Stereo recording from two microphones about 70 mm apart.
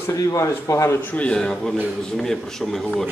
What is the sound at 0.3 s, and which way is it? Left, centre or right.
Speech, left.